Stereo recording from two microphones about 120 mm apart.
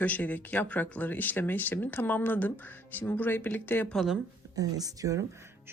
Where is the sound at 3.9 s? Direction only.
Centre (ahead or behind).